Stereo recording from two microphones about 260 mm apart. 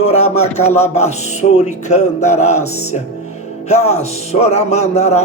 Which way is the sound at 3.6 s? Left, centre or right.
Left.